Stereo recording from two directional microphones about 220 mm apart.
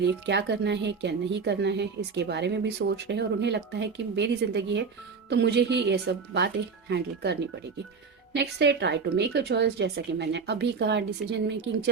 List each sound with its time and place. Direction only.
0.0 s a woman's voice: 50° right (ahead or behind)